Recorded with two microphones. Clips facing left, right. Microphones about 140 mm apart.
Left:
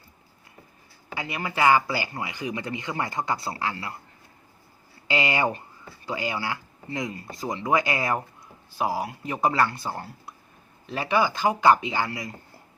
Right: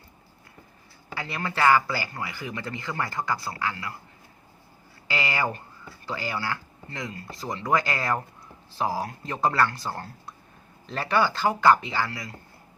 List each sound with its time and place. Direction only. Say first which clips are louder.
1.1 s speech: left 1 dB; 15° left (ahead or behind)
5.0 s speech: left 3 dB; 20° left (ahead or behind)